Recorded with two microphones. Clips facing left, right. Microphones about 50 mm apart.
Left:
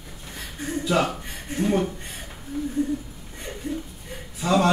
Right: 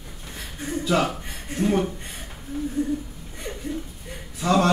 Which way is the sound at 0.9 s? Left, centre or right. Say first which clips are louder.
Even; centre.